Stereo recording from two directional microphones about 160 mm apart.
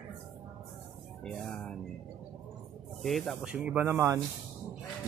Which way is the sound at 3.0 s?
Centre (ahead or behind).